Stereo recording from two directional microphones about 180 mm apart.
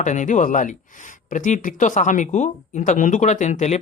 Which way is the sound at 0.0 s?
45° left (ahead or behind).